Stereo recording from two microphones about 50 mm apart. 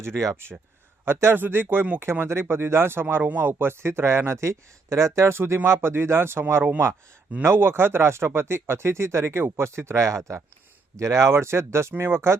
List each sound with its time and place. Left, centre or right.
0.0 s speech: right
1.0 s speech: right
5.6 s speech: right
6.5 s speech: right